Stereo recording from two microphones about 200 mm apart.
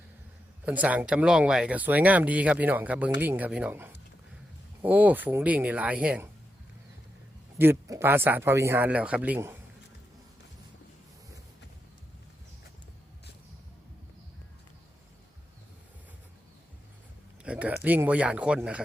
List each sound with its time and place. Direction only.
0.6 s speech: 5° right (ahead or behind)
7.6 s speech: 15° right (ahead or behind)
17.4 s a sound: 5° right (ahead or behind)
17.8 s speech: 10° right (ahead or behind)